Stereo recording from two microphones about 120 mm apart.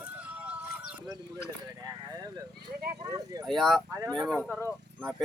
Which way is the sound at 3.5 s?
Centre (ahead or behind).